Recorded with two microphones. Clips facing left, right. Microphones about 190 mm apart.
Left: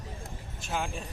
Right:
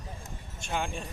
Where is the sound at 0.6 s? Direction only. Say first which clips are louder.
Right 1 dB; centre (ahead or behind).